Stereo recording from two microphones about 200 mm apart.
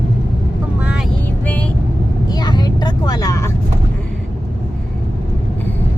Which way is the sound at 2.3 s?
20° left (ahead or behind).